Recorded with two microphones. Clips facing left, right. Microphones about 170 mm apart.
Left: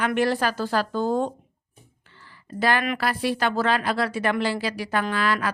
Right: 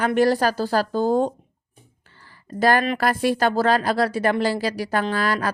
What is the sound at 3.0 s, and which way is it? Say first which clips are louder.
Speech: right 4 dB; 45° right (ahead or behind).